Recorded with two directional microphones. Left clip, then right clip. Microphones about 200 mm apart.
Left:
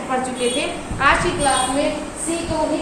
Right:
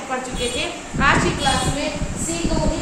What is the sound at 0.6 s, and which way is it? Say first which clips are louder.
Speech: left 1 dB; centre (ahead or behind).